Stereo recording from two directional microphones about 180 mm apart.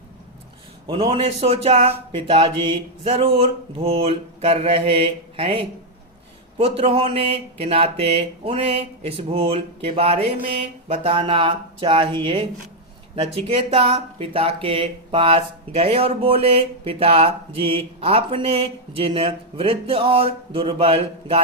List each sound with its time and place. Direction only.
0.9 s speech: 30° right (ahead or behind)